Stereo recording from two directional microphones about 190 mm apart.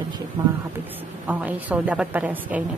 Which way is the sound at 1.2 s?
10° right (ahead or behind).